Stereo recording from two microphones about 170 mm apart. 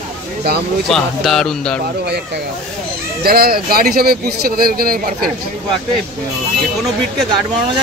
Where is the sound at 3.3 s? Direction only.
65° right (ahead or behind).